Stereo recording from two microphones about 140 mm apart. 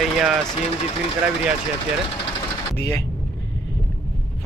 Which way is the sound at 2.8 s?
20° left (ahead or behind).